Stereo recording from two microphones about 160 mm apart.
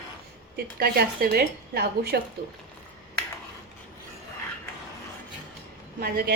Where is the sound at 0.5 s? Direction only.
75° right (ahead or behind).